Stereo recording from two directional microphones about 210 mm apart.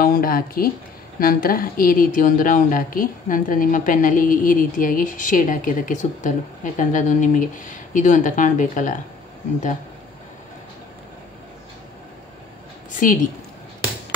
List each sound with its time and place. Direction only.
0.0 s a woman's voice: 45° left (ahead or behind)
13.0 s speech: 40° left (ahead or behind)